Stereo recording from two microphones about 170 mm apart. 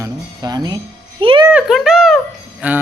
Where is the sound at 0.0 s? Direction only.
25° right (ahead or behind).